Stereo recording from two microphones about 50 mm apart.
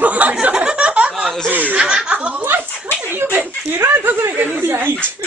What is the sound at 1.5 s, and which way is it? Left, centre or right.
Speech, right.